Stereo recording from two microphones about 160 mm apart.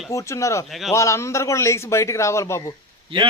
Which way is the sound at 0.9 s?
20° left (ahead or behind).